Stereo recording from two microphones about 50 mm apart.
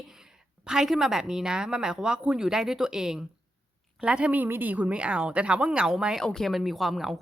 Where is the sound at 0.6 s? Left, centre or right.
Centre.